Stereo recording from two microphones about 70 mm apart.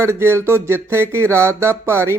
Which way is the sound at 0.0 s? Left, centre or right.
Right.